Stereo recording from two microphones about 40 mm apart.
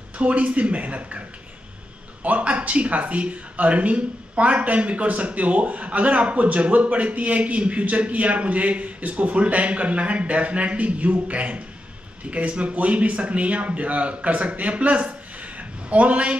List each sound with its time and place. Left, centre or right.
0.2 s speech: right
2.2 s speech: right